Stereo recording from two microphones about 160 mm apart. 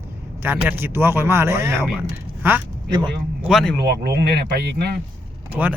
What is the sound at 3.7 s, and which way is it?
Speech, 90° right.